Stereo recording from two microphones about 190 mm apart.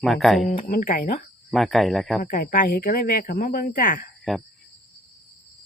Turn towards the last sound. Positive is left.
turn(degrees=5)  # may be behind; listen again after turning